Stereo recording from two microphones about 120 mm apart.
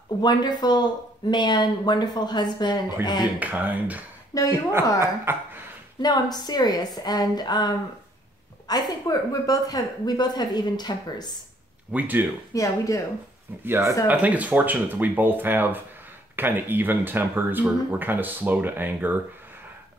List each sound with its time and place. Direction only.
0.2 s a woman's voice: 35° left (ahead or behind)
3.3 s speech: 15° right (ahead or behind)
4.3 s a woman's voice: 30° left (ahead or behind)
5.0 s speech: 20° right (ahead or behind)
5.9 s a woman's voice: 35° left (ahead or behind)
11.9 s speech: 15° right (ahead or behind)
12.5 s speech: 25° left (ahead or behind)
13.7 s speech: 20° right (ahead or behind)